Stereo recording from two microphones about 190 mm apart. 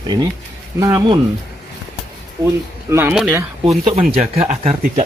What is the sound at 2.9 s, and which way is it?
Speech, 10° right (ahead or behind).